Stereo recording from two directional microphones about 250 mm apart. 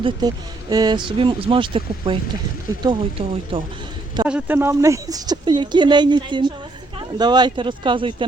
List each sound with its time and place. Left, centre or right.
0.0 s speech: centre
4.3 s speech: centre